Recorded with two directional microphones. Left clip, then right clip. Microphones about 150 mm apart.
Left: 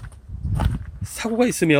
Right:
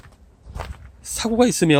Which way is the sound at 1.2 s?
30° right (ahead or behind).